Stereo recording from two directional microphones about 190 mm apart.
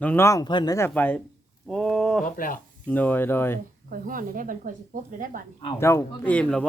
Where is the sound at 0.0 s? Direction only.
10° left (ahead or behind).